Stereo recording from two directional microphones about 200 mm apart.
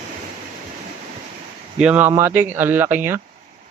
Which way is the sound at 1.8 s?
5° right (ahead or behind).